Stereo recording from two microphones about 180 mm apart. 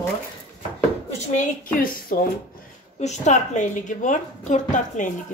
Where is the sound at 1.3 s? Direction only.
50° left (ahead or behind).